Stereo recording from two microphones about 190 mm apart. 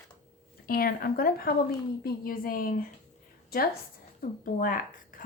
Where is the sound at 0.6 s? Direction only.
50° left (ahead or behind).